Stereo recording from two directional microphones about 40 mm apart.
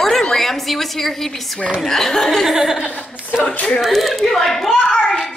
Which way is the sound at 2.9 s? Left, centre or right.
Left.